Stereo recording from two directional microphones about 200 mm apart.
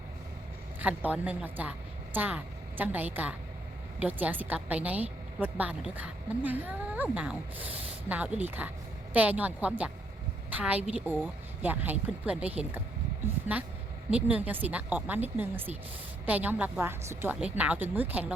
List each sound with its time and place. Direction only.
0.8 s a woman's voice: 5° right (ahead or behind)
11.1 s speech: 10° left (ahead or behind)
11.6 s a woman's voice: 10° right (ahead or behind)
14.1 s a woman's voice: 5° right (ahead or behind)